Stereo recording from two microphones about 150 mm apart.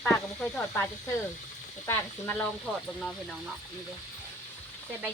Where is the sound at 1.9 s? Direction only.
15° left (ahead or behind).